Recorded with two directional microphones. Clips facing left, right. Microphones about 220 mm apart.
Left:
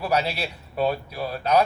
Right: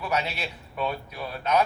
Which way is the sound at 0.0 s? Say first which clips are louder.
Left 4 dB; 35° left (ahead or behind).